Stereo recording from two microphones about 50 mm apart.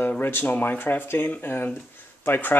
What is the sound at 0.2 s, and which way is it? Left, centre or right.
Speech, left.